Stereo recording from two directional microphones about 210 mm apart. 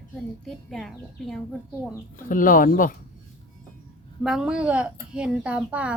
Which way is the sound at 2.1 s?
40° left (ahead or behind).